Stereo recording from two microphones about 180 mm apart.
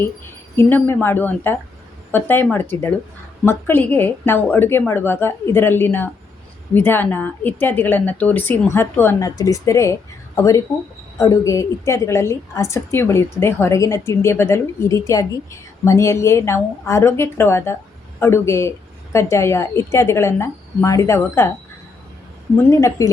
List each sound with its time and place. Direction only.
0.5 s a woman's voice: 10° left (ahead or behind)
22.5 s a woman's voice: 15° left (ahead or behind)